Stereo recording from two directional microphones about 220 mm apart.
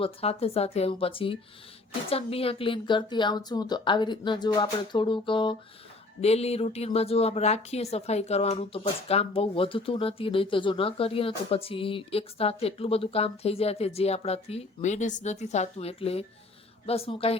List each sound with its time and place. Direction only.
0.0 s speech: 25° left (ahead or behind)